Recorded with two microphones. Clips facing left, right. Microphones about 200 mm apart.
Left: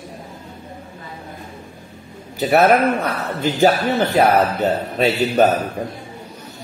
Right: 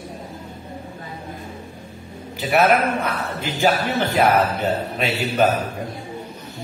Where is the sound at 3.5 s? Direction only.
40° left (ahead or behind).